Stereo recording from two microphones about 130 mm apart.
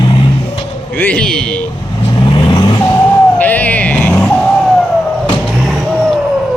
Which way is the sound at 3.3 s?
10° left (ahead or behind).